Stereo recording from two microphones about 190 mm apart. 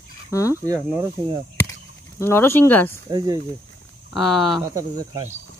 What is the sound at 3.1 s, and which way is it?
Speech, 20° right (ahead or behind).